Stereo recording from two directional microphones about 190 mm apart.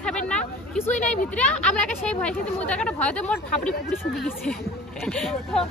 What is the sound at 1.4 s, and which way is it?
Speech, 5° left (ahead or behind).